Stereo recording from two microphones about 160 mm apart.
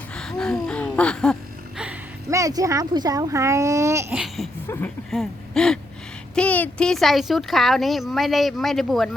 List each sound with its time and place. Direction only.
0.2 s a sound: 5° left (ahead or behind)
2.3 s speech: 20° right (ahead or behind)
4.1 s laughter: 5° right (ahead or behind)
4.6 s speech: 15° left (ahead or behind)
5.1 s speech: centre (ahead or behind)